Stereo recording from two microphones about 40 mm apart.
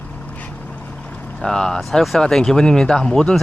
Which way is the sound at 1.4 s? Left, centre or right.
Centre.